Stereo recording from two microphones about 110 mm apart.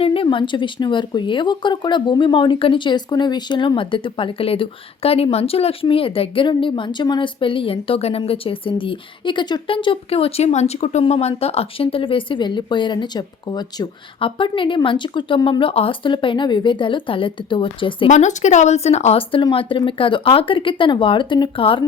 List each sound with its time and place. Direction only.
0.0 s speech: 55° left (ahead or behind); by 11.0 s 90° left
11.0 s speech: 75° left (ahead or behind); by 13.8 s 40° left (ahead or behind)
14.2 s speech: 50° left (ahead or behind)
18.1 s speech: 90° left
19.3 s speech: 50° left (ahead or behind)